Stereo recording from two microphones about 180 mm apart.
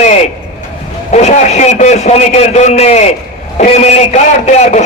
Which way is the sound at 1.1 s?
40° left (ahead or behind).